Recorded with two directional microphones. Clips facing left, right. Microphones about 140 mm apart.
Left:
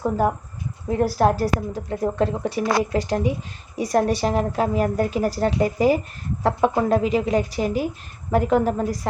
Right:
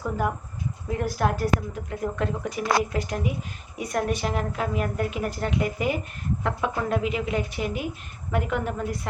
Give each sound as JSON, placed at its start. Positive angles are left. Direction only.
{"t": 0.0, "sound": "a woman's voice", "side_deg": 35}